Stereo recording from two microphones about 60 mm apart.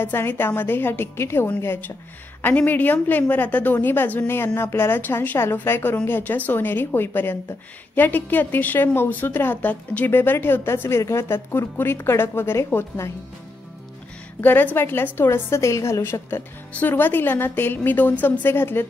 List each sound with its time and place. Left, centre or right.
0.0 s a woman's voice: left
2.4 s a woman's voice: left
5.4 s a woman's voice: left
14.4 s a woman's voice: left